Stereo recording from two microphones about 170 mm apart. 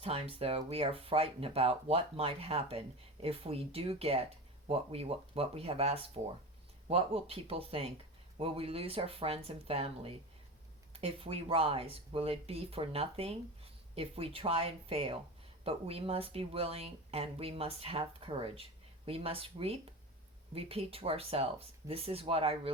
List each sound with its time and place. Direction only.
0.0 s speech: 35° right (ahead or behind)